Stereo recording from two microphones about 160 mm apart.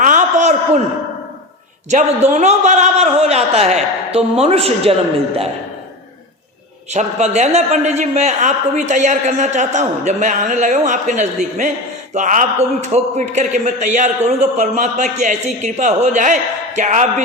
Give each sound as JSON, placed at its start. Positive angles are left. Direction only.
{"t": 0.0, "sound": "a sound", "side_deg": -50}
{"t": 1.9, "sound": "a man's voice", "side_deg": -50}
{"t": 6.9, "sound": "a man's voice", "side_deg": -45}